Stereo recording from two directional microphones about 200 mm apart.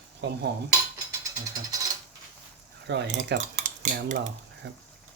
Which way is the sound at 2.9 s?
60° right (ahead or behind).